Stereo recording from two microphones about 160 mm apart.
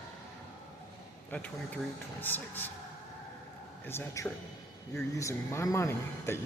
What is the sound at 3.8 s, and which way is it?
Speech, 15° left (ahead or behind).